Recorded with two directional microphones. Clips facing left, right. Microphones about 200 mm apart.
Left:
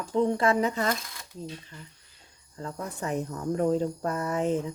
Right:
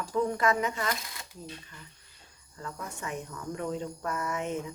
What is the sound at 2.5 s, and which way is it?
Speech, 30° left (ahead or behind).